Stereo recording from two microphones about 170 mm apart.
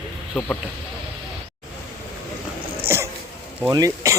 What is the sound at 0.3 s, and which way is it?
Speech, 10° left (ahead or behind).